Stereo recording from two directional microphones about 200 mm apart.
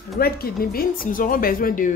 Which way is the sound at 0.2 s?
50° left (ahead or behind).